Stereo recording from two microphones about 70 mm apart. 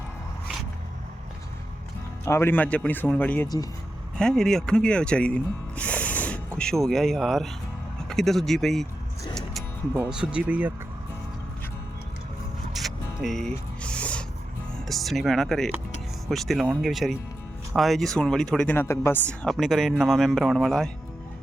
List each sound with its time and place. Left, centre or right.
2.2 s speech: left
2.6 s speech: left
3.4 s speech: left
4.2 s speech: centre
6.6 s speech: centre
10.1 s speech: centre
12.7 s music: centre
13.8 s music: centre
14.8 s speech: centre
18.7 s speech: left
19.2 s speech: centre
19.5 s speech: centre